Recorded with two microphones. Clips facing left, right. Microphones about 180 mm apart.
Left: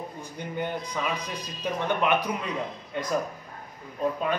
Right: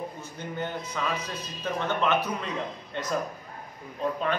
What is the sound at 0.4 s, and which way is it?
A man's voice, 15° left (ahead or behind).